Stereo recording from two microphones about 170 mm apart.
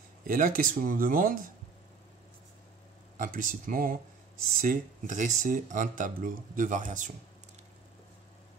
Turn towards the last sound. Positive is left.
turn(degrees=-50)  # may be behind; listen again after turning